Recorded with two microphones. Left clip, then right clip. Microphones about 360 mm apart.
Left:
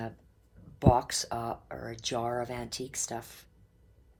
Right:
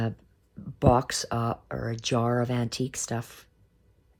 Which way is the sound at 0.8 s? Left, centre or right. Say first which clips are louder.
Right 3 dB; right.